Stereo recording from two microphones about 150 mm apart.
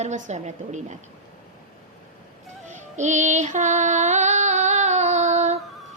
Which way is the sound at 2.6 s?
50° right (ahead or behind).